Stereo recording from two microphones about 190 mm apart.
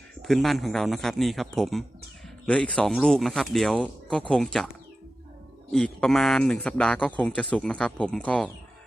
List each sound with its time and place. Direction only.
0.2 s speech: centre (ahead or behind)
5.7 s speech: 5° left (ahead or behind)